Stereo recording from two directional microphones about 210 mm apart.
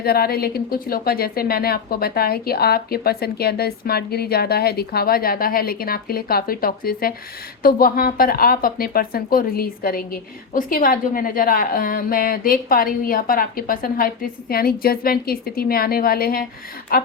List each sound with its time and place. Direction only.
0.0 s speech: 45° left (ahead or behind)